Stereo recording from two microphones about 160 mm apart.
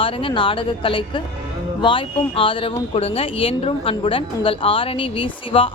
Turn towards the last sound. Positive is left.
turn(degrees=35)  # may be behind; listen again after turning